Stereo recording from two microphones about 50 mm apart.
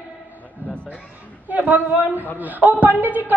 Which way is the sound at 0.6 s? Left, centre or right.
Right.